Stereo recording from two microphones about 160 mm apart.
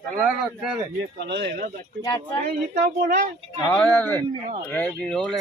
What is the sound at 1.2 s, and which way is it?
Speech, 90° right.